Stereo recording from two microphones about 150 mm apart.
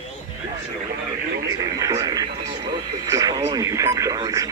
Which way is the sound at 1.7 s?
20° right (ahead or behind).